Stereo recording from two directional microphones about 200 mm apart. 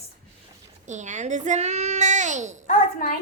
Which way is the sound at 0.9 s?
35° right (ahead or behind).